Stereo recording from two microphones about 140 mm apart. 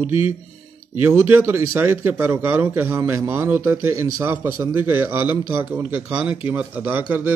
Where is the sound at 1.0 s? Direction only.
15° right (ahead or behind).